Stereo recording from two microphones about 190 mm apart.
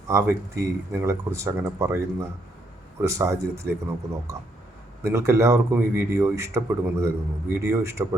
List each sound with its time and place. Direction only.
0.1 s speech: 15° right (ahead or behind)